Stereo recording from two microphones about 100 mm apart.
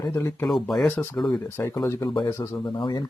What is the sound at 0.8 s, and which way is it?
Speech, 25° left (ahead or behind).